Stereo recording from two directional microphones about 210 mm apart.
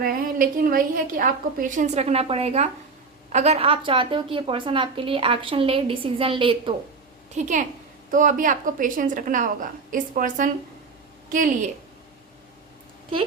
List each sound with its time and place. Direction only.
0.0 s a woman's voice: 45° right (ahead or behind); by 6.7 s 25° right (ahead or behind)
7.3 s a woman's voice: 35° right (ahead or behind)